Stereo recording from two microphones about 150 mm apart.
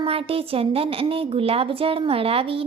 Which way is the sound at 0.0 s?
40° right (ahead or behind).